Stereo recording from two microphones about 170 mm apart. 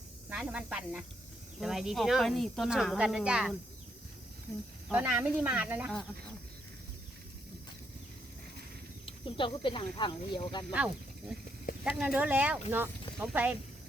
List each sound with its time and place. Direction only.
0.3 s speech: 5° right (ahead or behind)
4.9 s speech: 10° right (ahead or behind)
9.0 s speech: 30° left (ahead or behind)
11.9 s speech: 5° right (ahead or behind)